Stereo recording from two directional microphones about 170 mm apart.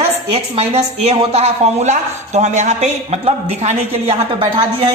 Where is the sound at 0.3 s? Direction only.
40° right (ahead or behind).